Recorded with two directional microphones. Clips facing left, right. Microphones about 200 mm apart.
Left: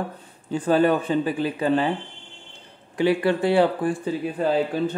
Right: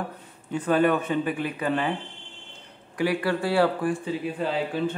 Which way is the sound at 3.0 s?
25° left (ahead or behind).